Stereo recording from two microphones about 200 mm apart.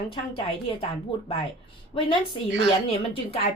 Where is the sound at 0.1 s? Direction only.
25° left (ahead or behind).